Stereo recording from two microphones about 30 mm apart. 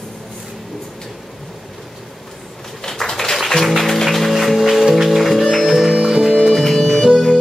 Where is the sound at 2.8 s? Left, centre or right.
Centre.